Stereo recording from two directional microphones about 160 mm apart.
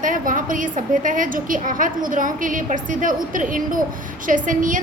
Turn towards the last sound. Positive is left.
turn(degrees=-55)  # may be behind; listen again after turning